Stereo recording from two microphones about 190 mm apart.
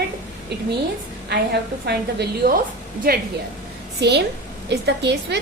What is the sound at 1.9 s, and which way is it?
A woman's voice, 55° right (ahead or behind).